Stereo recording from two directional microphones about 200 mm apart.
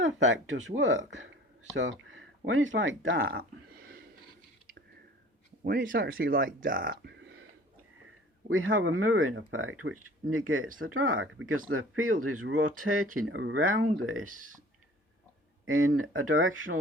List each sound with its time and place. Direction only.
0.8 s speech: 65° right (ahead or behind)
5.6 s speech: 45° right (ahead or behind); by 7.4 s 65° right (ahead or behind)
8.4 s speech: 90° right
13.1 s speech: 75° right (ahead or behind)
15.6 s speech: 90° right